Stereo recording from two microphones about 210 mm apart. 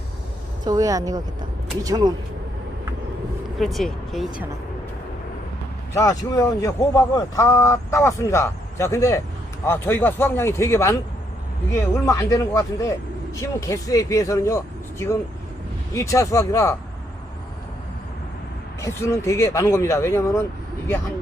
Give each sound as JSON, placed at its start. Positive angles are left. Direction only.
{"t": 0.6, "sound": "speech", "side_deg": -15}
{"t": 3.6, "sound": "speech", "side_deg": 0}
{"t": 5.9, "sound": "a man's voice", "side_deg": 15}
{"t": 12.0, "sound": "a man's voice", "side_deg": 15}
{"t": 18.8, "sound": "a man's voice", "side_deg": 15}